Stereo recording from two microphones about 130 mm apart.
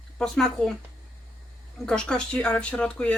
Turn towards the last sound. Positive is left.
turn(degrees=10)  # may be behind; listen again after turning